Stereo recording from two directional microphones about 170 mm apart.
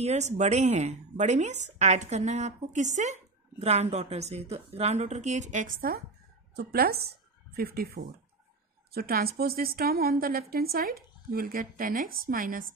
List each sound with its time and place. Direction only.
0.0 s a woman's voice: 40° right (ahead or behind)
6.5 s a woman's voice: 65° right (ahead or behind)